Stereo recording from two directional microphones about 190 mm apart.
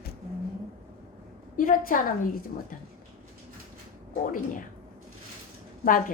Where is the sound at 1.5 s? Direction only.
45° left (ahead or behind).